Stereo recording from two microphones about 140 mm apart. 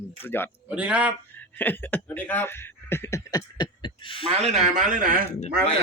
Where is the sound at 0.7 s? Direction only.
10° right (ahead or behind).